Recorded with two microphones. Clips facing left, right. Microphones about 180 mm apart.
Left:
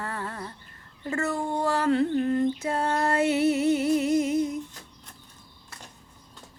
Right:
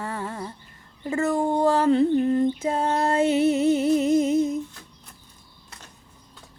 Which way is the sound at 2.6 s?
20° right (ahead or behind).